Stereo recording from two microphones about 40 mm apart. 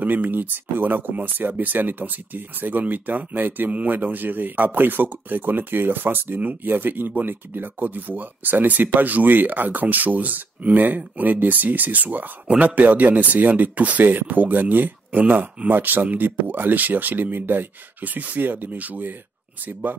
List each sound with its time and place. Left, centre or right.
0.0 s speech: right